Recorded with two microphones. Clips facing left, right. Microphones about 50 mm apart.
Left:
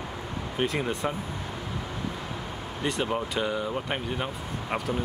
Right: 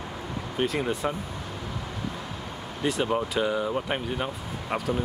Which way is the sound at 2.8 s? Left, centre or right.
Centre.